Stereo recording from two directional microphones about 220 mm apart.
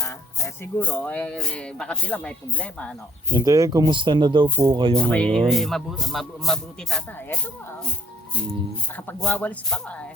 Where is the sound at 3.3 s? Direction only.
15° right (ahead or behind).